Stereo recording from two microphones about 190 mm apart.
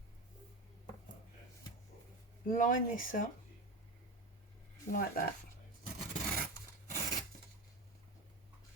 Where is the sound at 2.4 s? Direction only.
45° left (ahead or behind).